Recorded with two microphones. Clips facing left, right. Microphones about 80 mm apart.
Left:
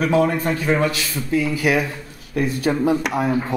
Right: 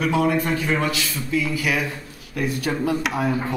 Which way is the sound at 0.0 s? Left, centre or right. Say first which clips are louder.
Left 2 dB; left.